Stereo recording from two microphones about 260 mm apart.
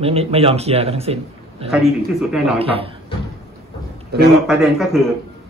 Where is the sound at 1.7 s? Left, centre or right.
Centre.